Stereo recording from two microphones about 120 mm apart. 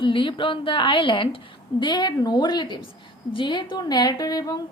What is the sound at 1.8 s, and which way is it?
A woman's voice, 40° left (ahead or behind).